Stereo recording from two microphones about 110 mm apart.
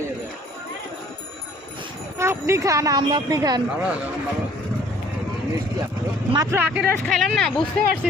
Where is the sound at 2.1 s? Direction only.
25° right (ahead or behind).